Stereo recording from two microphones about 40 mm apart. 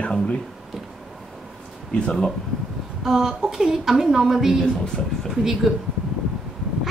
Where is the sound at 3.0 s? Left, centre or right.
Centre.